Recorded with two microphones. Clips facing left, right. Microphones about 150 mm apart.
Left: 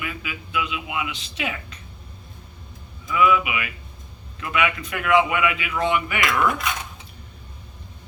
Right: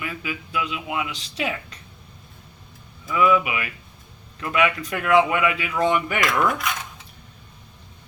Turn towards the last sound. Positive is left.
turn(degrees=0)  # may be behind; listen again after turning